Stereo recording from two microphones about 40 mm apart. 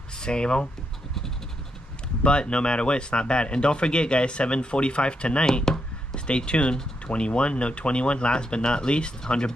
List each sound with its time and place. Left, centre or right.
0.2 s speech: left
2.2 s speech: left